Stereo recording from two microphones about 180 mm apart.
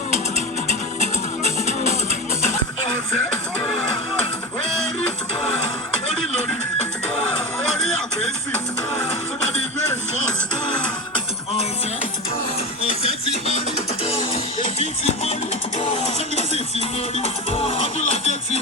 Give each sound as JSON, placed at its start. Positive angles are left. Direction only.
{"t": 0.1, "sound": "music", "side_deg": -35}
{"t": 1.5, "sound": "music", "side_deg": 40}
{"t": 12.8, "sound": "music", "side_deg": 35}
{"t": 13.1, "sound": "music", "side_deg": -35}
{"t": 15.0, "sound": "music", "side_deg": 35}